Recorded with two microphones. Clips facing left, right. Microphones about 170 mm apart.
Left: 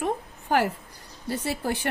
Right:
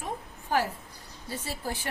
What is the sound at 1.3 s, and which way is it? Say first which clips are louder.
Speech: left 7 dB; 65° left (ahead or behind).